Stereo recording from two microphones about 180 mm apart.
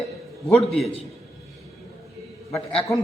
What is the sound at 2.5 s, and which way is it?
Speech, 15° left (ahead or behind).